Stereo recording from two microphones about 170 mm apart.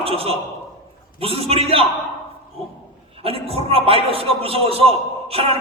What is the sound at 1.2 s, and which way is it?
Speech, 35° right (ahead or behind).